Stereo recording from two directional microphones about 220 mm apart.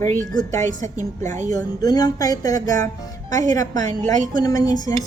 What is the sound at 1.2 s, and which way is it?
Speech, 35° right (ahead or behind).